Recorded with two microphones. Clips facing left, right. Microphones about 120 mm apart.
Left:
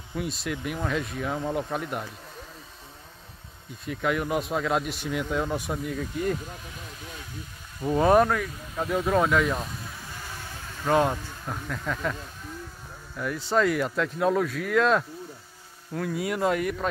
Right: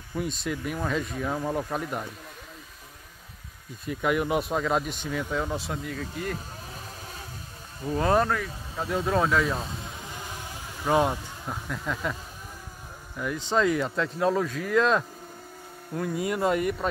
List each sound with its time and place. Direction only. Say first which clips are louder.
0.2 s speech: right 1 dB; centre (ahead or behind)
3.8 s speech: right 1 dB; 5° right (ahead or behind); by 5.8 s 15° left (ahead or behind)
7.8 s speech: left 4 dB; 25° left (ahead or behind)
8.1 s speech: left 3 dB; 5° left (ahead or behind)
9.6 s a sound: even; 25° right (ahead or behind); by 12.2 s 5° right (ahead or behind)
13.1 s speech: left 1 dB; 5° right (ahead or behind)